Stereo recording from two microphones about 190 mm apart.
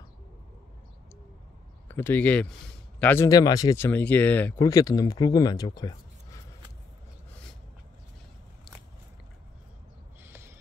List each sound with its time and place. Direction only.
1.9 s speech: 10° left (ahead or behind)
10.2 s crow: 15° right (ahead or behind)